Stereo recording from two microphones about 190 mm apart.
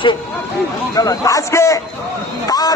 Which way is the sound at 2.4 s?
20° left (ahead or behind).